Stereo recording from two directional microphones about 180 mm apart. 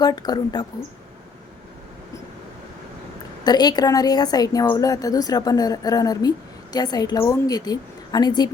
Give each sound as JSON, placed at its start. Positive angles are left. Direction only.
{"t": 0.0, "sound": "a woman's voice", "side_deg": 20}
{"t": 3.4, "sound": "a woman's voice", "side_deg": 20}